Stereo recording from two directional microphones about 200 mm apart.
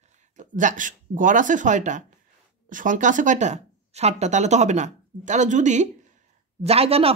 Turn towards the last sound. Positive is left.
turn(degrees=-30)  # may be behind; listen again after turning